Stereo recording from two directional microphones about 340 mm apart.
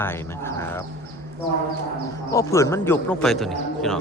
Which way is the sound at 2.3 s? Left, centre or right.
Centre.